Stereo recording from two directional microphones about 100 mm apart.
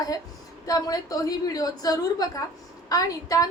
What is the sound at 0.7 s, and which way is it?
A woman's voice, 35° left (ahead or behind).